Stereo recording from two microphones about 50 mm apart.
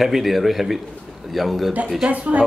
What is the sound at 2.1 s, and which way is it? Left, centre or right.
Speech, right.